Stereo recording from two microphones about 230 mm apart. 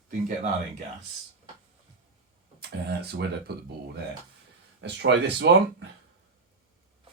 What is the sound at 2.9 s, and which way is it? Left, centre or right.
Speech, right.